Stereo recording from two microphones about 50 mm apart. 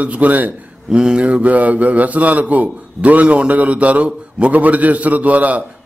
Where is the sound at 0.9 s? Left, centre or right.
Centre.